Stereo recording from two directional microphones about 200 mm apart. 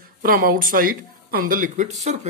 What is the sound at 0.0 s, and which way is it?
Speech, 45° right (ahead or behind).